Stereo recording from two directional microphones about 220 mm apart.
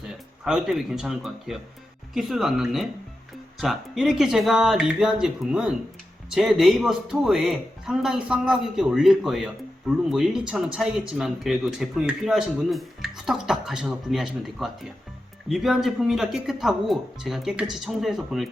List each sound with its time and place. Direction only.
0.1 s speech: centre (ahead or behind)